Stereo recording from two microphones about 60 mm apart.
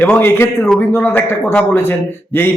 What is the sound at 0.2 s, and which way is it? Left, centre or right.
Speech, left.